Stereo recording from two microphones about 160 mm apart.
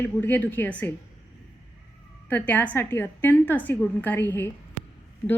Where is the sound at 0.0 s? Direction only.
10° left (ahead or behind).